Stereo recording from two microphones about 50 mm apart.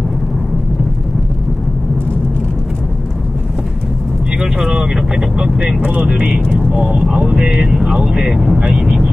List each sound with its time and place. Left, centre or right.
4.4 s vehicle: centre
6.0 s speech: centre